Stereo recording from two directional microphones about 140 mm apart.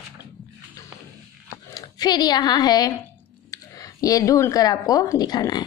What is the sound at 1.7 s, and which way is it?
A woman's voice, 25° left (ahead or behind).